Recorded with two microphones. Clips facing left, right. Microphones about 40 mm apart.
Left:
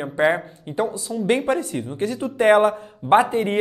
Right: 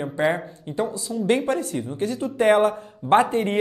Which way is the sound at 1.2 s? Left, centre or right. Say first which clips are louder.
Left 1 dB; centre.